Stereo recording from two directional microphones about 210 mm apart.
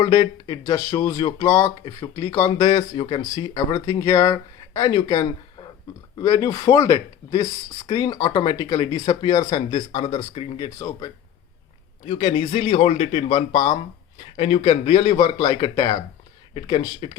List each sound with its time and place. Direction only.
0.0 s speech: 15° left (ahead or behind)